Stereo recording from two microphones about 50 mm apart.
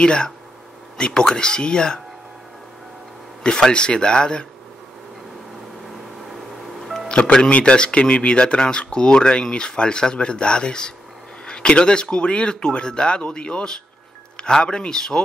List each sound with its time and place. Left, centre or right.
0.0 s speech: centre
3.4 s speech: centre
7.1 s speech: centre